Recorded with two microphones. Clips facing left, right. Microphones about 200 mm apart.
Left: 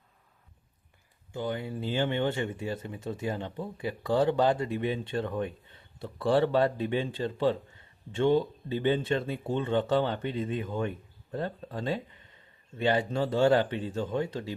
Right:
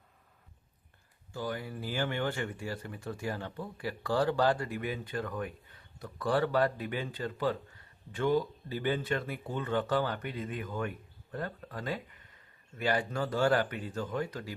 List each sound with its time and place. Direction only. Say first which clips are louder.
1.3 s speech: left 4 dB; 20° left (ahead or behind)